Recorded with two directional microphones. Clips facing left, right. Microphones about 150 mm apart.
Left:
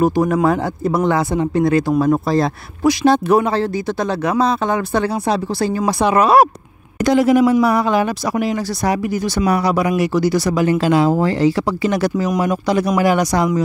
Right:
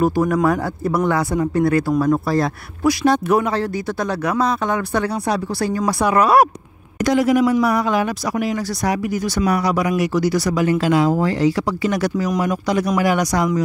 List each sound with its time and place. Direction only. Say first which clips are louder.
0.0 s speech: left 2 dB; 20° left (ahead or behind)